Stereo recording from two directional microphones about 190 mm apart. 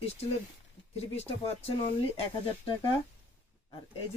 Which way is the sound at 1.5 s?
30° left (ahead or behind).